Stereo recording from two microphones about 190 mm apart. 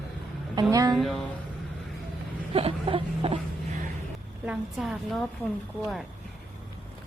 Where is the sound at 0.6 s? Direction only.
20° right (ahead or behind).